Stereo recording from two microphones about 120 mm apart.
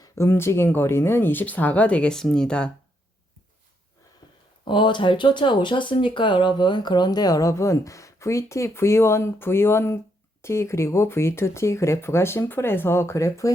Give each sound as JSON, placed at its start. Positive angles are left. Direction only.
{"t": 0.0, "sound": "speech", "side_deg": 20}
{"t": 4.6, "sound": "speech", "side_deg": 40}